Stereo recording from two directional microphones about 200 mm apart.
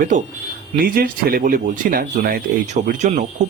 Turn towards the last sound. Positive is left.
turn(degrees=-35)  # may be behind; listen again after turning